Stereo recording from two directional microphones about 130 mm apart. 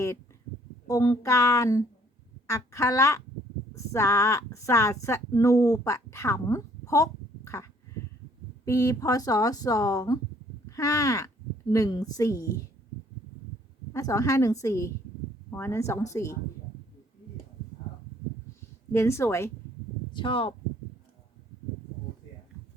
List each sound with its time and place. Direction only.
0.9 s speech: 25° left (ahead or behind)
13.9 s speech: 25° left (ahead or behind)
18.9 s speech: 20° left (ahead or behind)
20.1 s speech: 40° left (ahead or behind)